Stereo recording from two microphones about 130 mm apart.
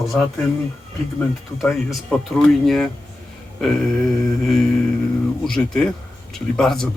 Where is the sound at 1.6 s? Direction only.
5° left (ahead or behind).